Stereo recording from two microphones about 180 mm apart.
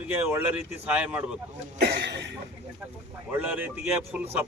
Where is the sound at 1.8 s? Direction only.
70° right (ahead or behind).